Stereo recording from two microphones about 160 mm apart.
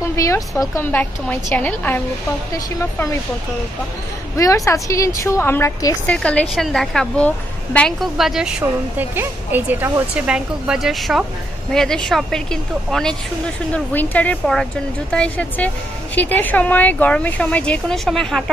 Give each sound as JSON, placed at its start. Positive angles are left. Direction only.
{"t": 0.1, "sound": "speech", "side_deg": 20}
{"t": 4.4, "sound": "a woman's voice", "side_deg": 20}
{"t": 6.0, "sound": "a woman's voice", "side_deg": 10}